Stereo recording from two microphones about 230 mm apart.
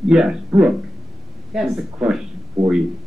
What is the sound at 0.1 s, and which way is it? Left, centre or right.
Speech, centre.